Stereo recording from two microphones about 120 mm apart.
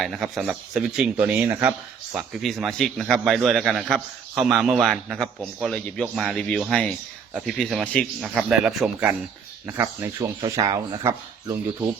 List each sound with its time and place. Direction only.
0.0 s a man's voice: centre (ahead or behind)
2.1 s a man's voice: centre (ahead or behind); by 11.5 s 25° right (ahead or behind)